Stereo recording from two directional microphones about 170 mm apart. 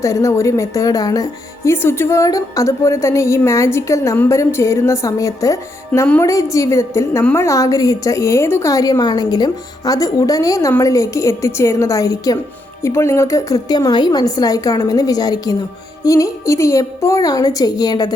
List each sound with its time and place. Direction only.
0.0 s a woman's voice: 20° left (ahead or behind)